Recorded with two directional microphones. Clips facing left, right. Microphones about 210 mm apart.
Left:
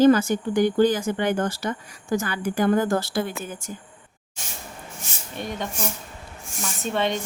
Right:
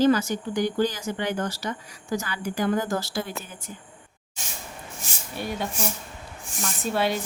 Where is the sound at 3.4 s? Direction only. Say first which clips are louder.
Left 7 dB; 45° left (ahead or behind).